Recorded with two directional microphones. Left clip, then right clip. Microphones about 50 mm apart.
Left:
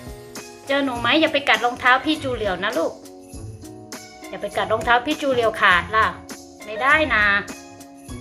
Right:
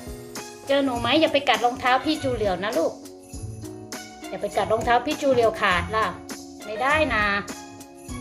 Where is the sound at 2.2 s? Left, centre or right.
Right.